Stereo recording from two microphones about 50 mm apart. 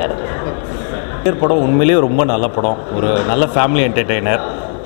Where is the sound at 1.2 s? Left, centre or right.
Centre.